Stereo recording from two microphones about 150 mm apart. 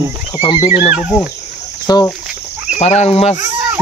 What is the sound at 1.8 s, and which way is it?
Speech, 25° left (ahead or behind).